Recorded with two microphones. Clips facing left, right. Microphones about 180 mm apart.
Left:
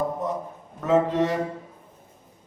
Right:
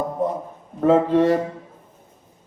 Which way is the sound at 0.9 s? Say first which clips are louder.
Right 5 dB; 30° right (ahead or behind).